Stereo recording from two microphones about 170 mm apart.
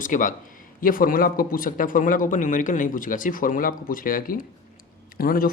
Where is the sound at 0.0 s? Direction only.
50° left (ahead or behind).